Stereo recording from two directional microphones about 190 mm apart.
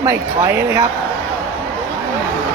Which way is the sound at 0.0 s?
15° right (ahead or behind).